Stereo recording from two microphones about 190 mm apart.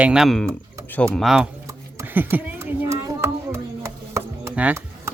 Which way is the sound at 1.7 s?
15° right (ahead or behind).